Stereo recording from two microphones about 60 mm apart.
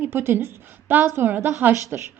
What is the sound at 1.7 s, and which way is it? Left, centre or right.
Speech, right.